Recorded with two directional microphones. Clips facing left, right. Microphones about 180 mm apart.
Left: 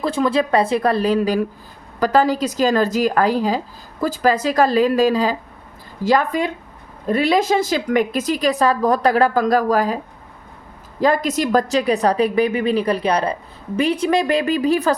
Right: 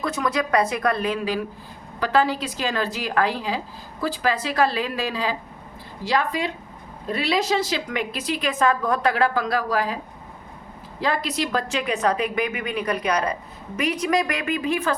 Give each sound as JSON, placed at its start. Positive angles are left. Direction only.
{"t": 0.0, "sound": "a woman's voice", "side_deg": 30}
{"t": 11.0, "sound": "a woman's voice", "side_deg": 45}